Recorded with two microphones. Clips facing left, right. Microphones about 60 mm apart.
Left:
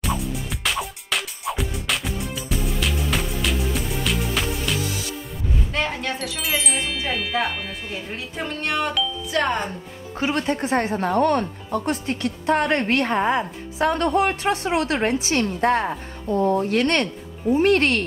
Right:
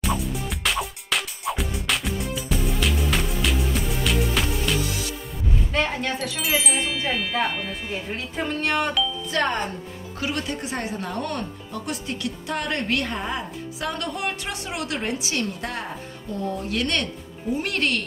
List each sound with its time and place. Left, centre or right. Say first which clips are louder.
0.0 s music: even; centre
5.7 s speech: right 1 dB; centre
10.1 s speech: left 5 dB; left